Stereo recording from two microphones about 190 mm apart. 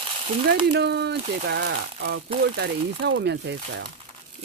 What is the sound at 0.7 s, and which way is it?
Speech, 60° right (ahead or behind).